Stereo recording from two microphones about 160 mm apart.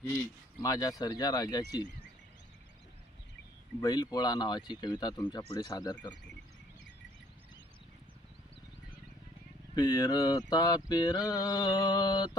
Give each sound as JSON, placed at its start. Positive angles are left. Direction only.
{"t": 0.6, "sound": "mantra", "side_deg": 25}
{"t": 3.8, "sound": "mantra", "side_deg": 25}
{"t": 9.7, "sound": "mantra", "side_deg": 25}